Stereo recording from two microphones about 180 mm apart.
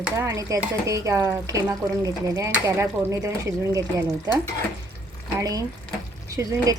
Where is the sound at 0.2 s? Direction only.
15° right (ahead or behind).